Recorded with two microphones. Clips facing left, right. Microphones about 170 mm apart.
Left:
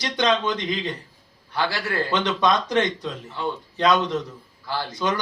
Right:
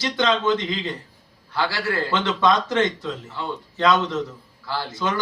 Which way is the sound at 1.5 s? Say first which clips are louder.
Right 1 dB; 20° left (ahead or behind).